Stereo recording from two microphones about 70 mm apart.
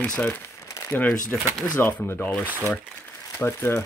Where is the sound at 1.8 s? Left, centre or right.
Left.